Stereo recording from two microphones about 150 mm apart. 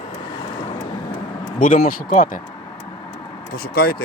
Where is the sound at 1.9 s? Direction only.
65° left (ahead or behind).